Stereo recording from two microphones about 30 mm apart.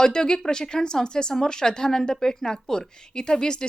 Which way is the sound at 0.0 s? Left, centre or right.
Left.